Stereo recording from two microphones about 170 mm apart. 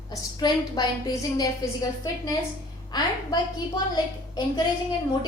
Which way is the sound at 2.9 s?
25° left (ahead or behind).